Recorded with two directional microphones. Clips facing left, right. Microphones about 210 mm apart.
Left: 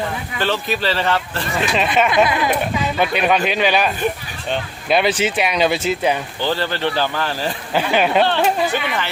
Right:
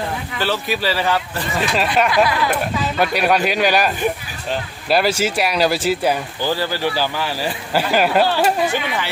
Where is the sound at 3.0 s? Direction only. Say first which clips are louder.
Right 1 dB; 5° right (ahead or behind).